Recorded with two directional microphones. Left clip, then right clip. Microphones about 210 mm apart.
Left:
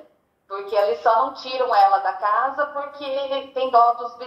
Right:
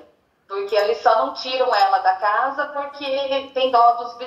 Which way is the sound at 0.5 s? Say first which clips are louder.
Right 1 dB; 20° right (ahead or behind).